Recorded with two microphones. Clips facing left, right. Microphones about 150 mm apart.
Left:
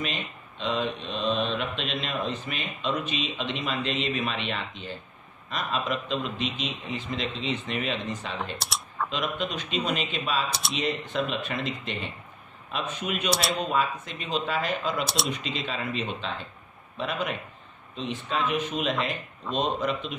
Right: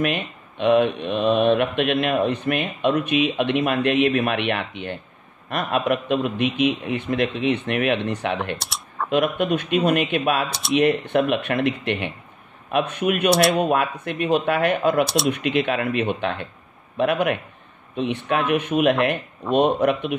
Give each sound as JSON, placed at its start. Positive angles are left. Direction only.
{"t": 0.0, "sound": "speech", "side_deg": -60}
{"t": 8.5, "sound": "speech", "side_deg": 0}
{"t": 8.9, "sound": "speech", "side_deg": -55}
{"t": 13.3, "sound": "speech", "side_deg": 0}
{"t": 13.6, "sound": "speech", "side_deg": -65}
{"t": 15.0, "sound": "speech", "side_deg": 0}
{"t": 15.3, "sound": "speech", "side_deg": -65}